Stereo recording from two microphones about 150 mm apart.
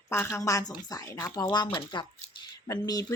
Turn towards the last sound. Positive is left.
turn(degrees=25)  # may be behind; listen again after turning